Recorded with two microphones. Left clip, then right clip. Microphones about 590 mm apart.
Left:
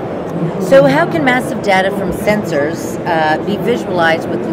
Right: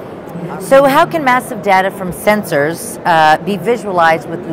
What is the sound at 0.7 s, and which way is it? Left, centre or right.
A woman's voice, right.